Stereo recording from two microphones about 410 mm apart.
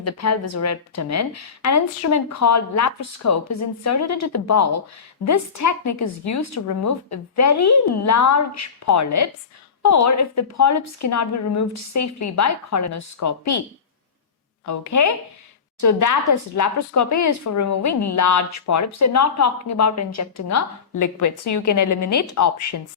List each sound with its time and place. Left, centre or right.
0.0 s a woman's voice: left
14.6 s speech: left